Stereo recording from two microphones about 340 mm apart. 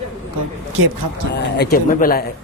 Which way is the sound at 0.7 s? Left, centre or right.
Right.